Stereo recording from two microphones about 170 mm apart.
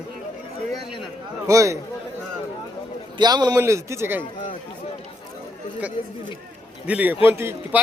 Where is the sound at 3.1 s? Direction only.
25° right (ahead or behind).